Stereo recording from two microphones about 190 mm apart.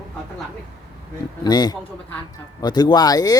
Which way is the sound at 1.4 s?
20° left (ahead or behind).